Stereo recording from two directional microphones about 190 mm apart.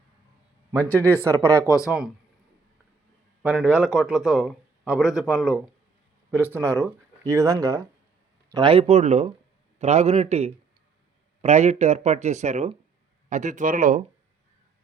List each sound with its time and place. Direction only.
0.8 s speech: 10° left (ahead or behind)
1.3 s speech: 15° right (ahead or behind)
1.6 s speech: 15° left (ahead or behind)
1.9 s a man's voice: 5° right (ahead or behind)
3.4 s a man's voice: 5° right (ahead or behind)
8.5 s speech: 25° right (ahead or behind); by 14.0 s 45° right (ahead or behind)